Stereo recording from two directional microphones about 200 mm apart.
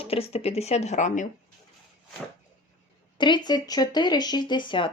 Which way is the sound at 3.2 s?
20° left (ahead or behind).